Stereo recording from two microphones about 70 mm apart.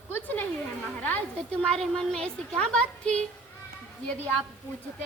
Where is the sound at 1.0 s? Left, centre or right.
Left.